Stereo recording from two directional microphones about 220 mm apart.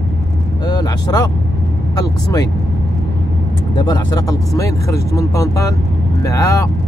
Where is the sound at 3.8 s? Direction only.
20° left (ahead or behind).